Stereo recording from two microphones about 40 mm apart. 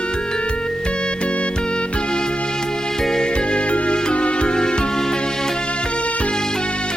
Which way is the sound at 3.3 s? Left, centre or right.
Left.